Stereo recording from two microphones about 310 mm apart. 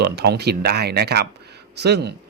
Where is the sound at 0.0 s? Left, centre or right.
Right.